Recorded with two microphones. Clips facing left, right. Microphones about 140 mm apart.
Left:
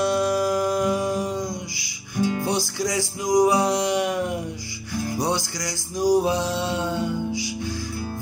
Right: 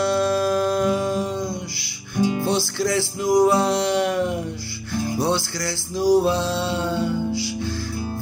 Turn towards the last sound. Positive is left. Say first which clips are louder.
# right 3 dB
turn(degrees=15)  # may be behind; listen again after turning